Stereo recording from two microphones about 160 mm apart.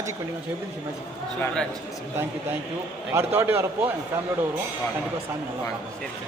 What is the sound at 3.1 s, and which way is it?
Speech, 15° right (ahead or behind).